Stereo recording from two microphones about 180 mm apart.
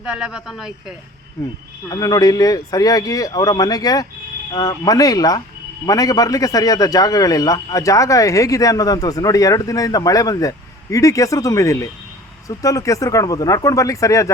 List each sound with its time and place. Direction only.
0.0 s a woman's voice: 5° right (ahead or behind)
1.9 s a man's voice: 20° left (ahead or behind)